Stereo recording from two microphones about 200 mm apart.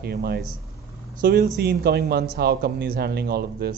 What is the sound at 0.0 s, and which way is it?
A man's voice, 55° right (ahead or behind).